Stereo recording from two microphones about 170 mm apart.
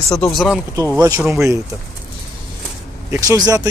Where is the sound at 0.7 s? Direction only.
20° right (ahead or behind).